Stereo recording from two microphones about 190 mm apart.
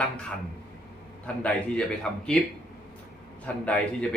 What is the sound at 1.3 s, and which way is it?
Speech, 5° left (ahead or behind).